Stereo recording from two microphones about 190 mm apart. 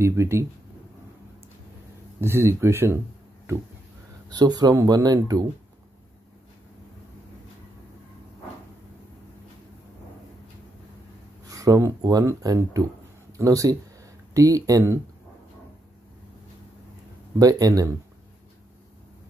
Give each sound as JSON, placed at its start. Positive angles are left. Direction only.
{"t": 0.0, "sound": "speech", "side_deg": -15}
{"t": 2.1, "sound": "speech", "side_deg": -15}
{"t": 4.3, "sound": "speech", "side_deg": -20}
{"t": 11.4, "sound": "speech", "side_deg": -15}
{"t": 17.4, "sound": "speech", "side_deg": -20}